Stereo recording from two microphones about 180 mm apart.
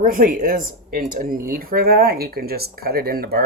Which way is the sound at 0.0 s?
50° right (ahead or behind).